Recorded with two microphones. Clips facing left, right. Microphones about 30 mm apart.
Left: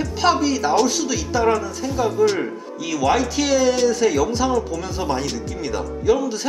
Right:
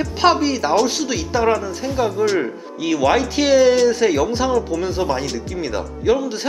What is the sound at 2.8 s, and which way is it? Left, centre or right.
Speech, centre.